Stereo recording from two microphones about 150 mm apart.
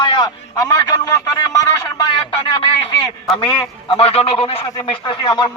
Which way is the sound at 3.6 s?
40° left (ahead or behind).